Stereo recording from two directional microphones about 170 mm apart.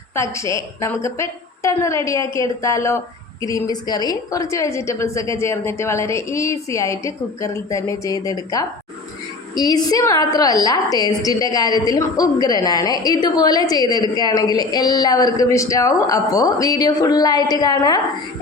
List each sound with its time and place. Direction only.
0.1 s a woman's voice: 15° left (ahead or behind)